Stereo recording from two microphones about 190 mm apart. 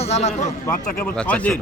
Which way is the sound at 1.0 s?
5° left (ahead or behind).